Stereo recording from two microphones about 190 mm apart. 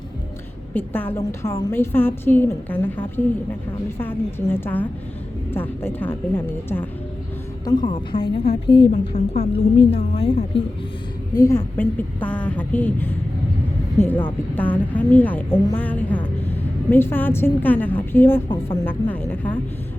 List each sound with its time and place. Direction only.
0.7 s a woman's voice: 10° left (ahead or behind)
7.6 s a woman's voice: 20° left (ahead or behind)
8.6 s a woman's voice: 65° left (ahead or behind)
9.3 s a woman's voice: 35° left (ahead or behind)
11.3 s a woman's voice: 15° left (ahead or behind)
14.5 s a woman's voice: 10° left (ahead or behind)
18.4 s a woman's voice: 25° left (ahead or behind)
18.9 s a woman's voice: 10° left (ahead or behind)